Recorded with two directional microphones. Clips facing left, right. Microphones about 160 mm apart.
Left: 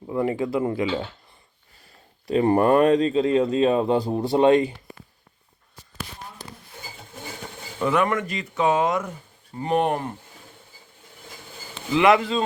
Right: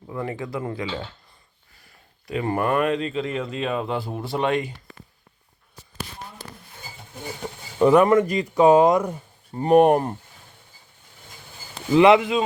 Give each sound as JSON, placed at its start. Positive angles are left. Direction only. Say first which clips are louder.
{"t": 0.1, "sound": "speech", "louder": "left 6 dB", "side_deg": 20}
{"t": 2.2, "sound": "speech", "louder": "left 6 dB", "side_deg": 30}
{"t": 7.8, "sound": "speech", "louder": "right 7 dB", "side_deg": -35}
{"t": 11.9, "sound": "speech", "louder": "right 3 dB", "side_deg": -25}